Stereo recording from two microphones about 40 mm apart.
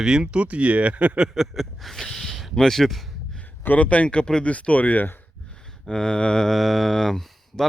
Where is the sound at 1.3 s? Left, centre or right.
Centre.